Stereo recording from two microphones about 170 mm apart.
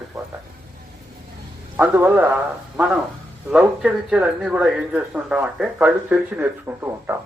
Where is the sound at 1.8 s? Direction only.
10° right (ahead or behind).